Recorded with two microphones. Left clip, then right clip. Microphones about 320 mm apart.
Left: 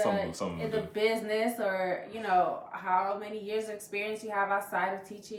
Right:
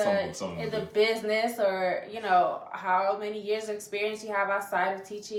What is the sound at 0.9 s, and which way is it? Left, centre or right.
Speech, centre.